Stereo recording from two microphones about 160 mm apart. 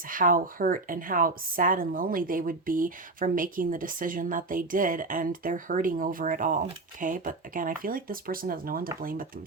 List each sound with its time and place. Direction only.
0.1 s speech: 60° right (ahead or behind)